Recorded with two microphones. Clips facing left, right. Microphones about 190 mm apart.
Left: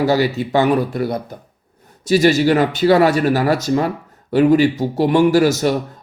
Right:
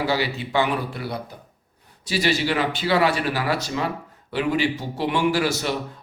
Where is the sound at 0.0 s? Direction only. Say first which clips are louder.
Left 8 dB; 45° left (ahead or behind).